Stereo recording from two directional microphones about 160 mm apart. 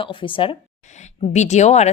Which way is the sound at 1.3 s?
45° left (ahead or behind).